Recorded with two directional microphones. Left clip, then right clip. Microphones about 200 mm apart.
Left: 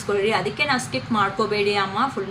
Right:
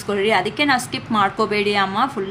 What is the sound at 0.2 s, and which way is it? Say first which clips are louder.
A woman's voice: right 6 dB; 50° right (ahead or behind).